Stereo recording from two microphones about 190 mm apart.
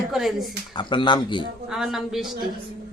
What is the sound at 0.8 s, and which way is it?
Speech, 25° left (ahead or behind).